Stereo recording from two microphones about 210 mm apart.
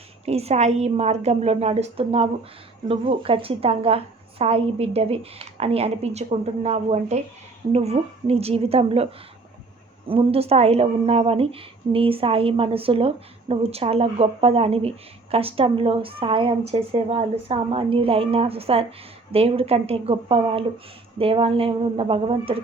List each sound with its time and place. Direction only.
0.3 s a woman's voice: 30° right (ahead or behind)
10.1 s a woman's voice: 25° right (ahead or behind)